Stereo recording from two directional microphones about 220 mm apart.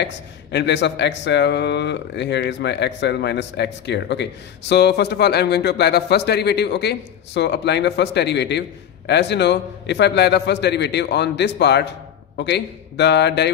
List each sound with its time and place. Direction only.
0.0 s speech: 50° left (ahead or behind)